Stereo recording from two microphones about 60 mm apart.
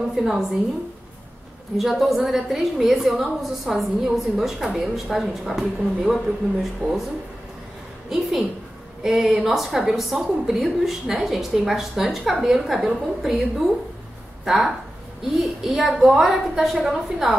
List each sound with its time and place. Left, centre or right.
0.1 s a woman's voice: centre
1.8 s a woman's voice: centre
8.1 s a woman's voice: centre
14.4 s a woman's voice: centre